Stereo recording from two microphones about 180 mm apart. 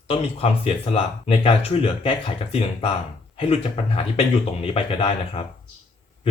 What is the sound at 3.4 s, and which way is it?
Speech, 35° left (ahead or behind).